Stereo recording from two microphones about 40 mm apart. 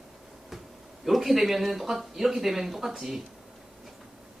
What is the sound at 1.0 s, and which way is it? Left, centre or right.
Speech, centre.